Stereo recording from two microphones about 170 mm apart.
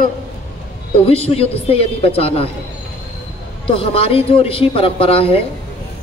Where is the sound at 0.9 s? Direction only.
35° left (ahead or behind).